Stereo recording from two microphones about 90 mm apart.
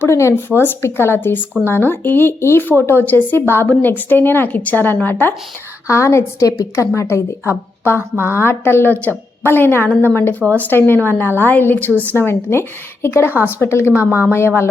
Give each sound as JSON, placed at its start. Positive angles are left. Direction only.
{"t": 0.0, "sound": "a woman's voice", "side_deg": 30}
{"t": 5.9, "sound": "a woman's voice", "side_deg": 30}